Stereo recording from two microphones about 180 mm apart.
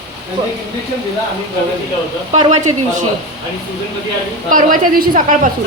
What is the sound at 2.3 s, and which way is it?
Speech, 40° right (ahead or behind).